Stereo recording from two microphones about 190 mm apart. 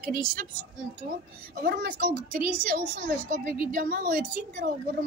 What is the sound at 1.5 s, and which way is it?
A child's voice, 55° right (ahead or behind).